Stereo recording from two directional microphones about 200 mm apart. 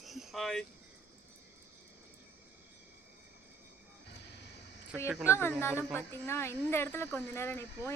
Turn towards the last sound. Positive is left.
turn(degrees=10)  # may be behind; listen again after turning